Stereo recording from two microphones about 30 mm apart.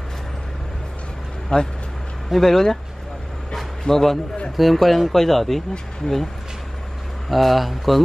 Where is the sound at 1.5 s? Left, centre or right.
Left.